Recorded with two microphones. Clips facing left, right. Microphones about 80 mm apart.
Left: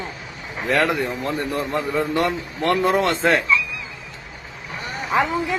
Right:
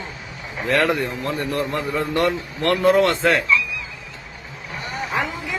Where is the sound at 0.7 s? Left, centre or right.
Centre.